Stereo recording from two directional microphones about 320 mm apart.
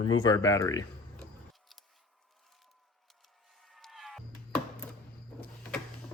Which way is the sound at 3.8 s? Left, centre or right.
Centre.